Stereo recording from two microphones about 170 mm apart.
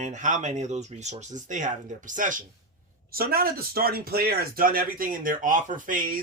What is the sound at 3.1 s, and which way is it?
Speech, 60° right (ahead or behind).